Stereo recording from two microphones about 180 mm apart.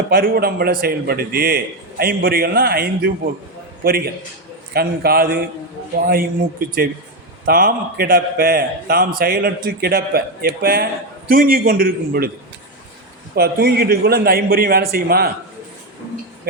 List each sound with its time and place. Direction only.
0.1 s a man's voice: 55° right (ahead or behind)
13.3 s a man's voice: 60° right (ahead or behind)